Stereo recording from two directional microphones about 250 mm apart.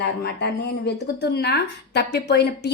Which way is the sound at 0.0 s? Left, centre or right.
Left.